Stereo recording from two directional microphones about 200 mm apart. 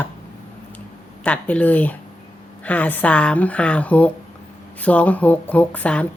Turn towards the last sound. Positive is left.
turn(degrees=5)  # may be behind; listen again after turning